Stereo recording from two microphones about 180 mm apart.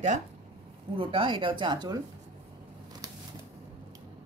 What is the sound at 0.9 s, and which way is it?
Speech, 30° right (ahead or behind).